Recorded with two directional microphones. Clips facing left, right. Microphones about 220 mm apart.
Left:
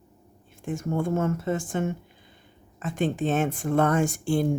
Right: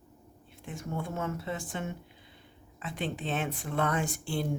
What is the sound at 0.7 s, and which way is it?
Speech, 50° left (ahead or behind).